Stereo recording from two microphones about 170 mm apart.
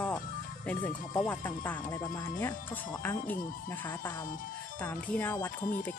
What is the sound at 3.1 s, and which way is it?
Speech, 55° left (ahead or behind).